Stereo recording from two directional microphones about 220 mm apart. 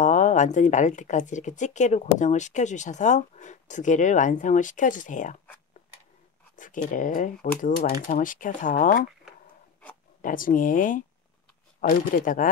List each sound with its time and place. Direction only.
0.0 s speech: 35° left (ahead or behind)
6.5 s speech: 35° left (ahead or behind)
10.2 s speech: 40° left (ahead or behind)